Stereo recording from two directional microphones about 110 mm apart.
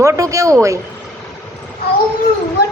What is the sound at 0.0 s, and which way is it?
Speech, 30° right (ahead or behind).